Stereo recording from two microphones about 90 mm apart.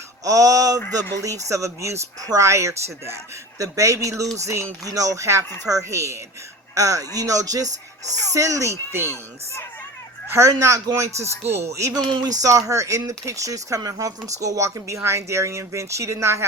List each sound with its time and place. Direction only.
0.3 s speech: 40° right (ahead or behind)
8.9 s speech: 25° right (ahead or behind)
10.3 s speech: 40° right (ahead or behind)